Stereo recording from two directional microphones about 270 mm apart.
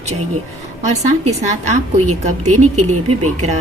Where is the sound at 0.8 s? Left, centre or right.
Right.